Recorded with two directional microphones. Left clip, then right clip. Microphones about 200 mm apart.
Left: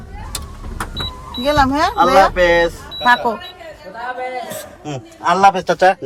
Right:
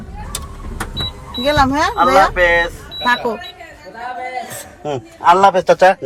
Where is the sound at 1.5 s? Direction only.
20° right (ahead or behind).